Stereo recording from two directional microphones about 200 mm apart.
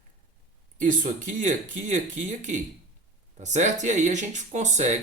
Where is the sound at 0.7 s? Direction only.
40° right (ahead or behind).